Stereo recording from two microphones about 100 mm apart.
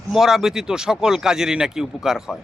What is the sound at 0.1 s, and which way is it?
A man's voice, 5° right (ahead or behind).